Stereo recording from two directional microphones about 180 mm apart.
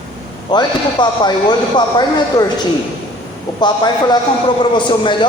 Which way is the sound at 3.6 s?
25° left (ahead or behind).